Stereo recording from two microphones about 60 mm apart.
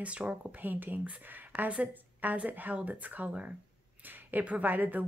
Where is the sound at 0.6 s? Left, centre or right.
Right.